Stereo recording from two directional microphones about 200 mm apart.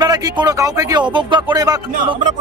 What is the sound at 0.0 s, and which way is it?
Speech, 20° right (ahead or behind).